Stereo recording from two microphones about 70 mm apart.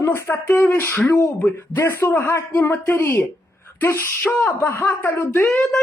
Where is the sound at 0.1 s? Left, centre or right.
Left.